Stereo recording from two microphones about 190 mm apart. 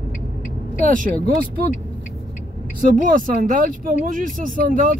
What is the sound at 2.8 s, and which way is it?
Speech, 45° right (ahead or behind).